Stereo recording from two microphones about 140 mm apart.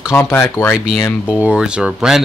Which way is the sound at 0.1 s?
15° left (ahead or behind).